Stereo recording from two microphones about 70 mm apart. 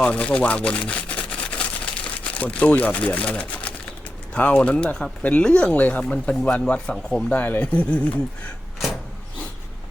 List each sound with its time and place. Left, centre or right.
0.0 s a sound: centre
2.3 s speech: centre
7.3 s speech: left